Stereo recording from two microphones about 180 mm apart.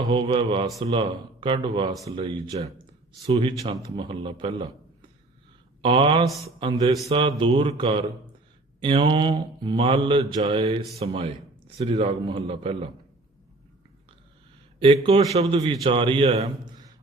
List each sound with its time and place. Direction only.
0.1 s mantra: 30° right (ahead or behind)
5.8 s mantra: 30° right (ahead or behind)
11.8 s a man's voice: 35° right (ahead or behind)
15.0 s a man's voice: 35° right (ahead or behind)
15.5 s mantra: 25° right (ahead or behind)